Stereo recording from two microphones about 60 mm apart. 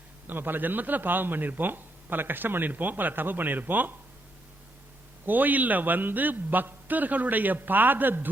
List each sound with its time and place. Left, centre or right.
0.3 s speech: right
5.2 s speech: right